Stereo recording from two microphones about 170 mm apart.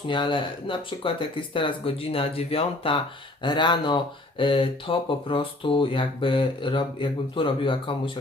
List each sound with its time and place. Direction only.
0.1 s speech: 30° left (ahead or behind)